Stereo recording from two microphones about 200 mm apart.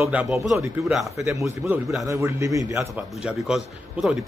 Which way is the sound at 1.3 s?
15° right (ahead or behind).